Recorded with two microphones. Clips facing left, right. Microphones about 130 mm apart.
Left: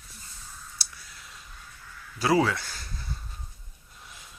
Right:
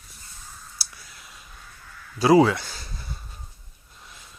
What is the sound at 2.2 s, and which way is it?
Speech, 25° right (ahead or behind).